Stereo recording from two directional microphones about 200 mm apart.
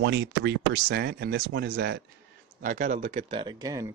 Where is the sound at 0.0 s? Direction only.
60° right (ahead or behind).